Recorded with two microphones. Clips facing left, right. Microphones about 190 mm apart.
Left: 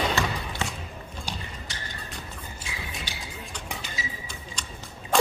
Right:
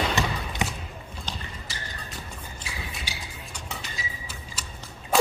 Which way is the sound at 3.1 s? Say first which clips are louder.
Right 1 dB; 10° right (ahead or behind).